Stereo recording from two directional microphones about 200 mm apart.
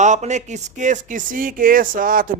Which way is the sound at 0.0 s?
35° right (ahead or behind).